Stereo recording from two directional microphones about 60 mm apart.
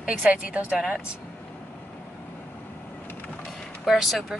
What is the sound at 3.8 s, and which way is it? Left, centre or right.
Speech, centre.